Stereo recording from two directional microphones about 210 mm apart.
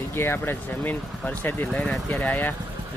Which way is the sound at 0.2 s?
10° left (ahead or behind).